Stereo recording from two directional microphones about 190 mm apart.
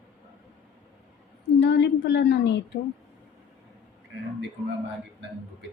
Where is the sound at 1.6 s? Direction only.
65° left (ahead or behind).